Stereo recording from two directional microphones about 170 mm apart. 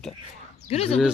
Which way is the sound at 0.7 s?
35° left (ahead or behind).